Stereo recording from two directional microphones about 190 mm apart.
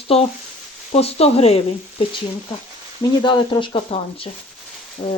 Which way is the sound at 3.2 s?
25° left (ahead or behind).